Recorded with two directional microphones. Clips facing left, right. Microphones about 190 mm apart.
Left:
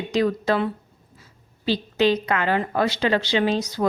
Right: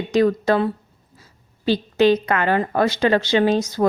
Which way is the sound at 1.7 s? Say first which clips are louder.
Right 4 dB; 50° right (ahead or behind).